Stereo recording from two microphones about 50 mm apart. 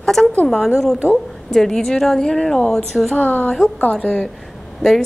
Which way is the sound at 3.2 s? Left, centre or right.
Left.